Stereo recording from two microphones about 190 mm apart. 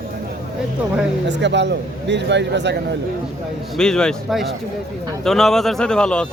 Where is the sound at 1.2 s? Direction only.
65° right (ahead or behind).